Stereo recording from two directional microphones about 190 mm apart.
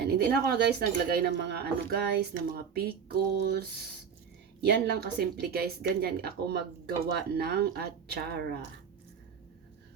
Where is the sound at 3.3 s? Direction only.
60° right (ahead or behind).